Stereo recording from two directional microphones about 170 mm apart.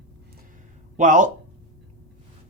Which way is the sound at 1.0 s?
50° right (ahead or behind).